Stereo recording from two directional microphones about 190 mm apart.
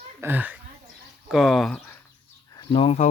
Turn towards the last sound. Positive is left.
turn(degrees=30)  # may be behind; listen again after turning